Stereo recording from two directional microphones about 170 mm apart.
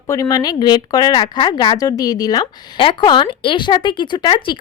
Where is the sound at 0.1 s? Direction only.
20° left (ahead or behind).